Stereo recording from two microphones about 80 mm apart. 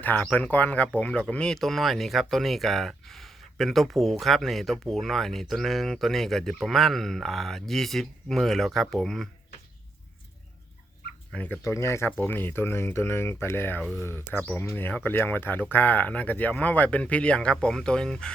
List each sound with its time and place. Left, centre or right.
0.0 s speech: centre
11.6 s speech: left
12.1 s speech: left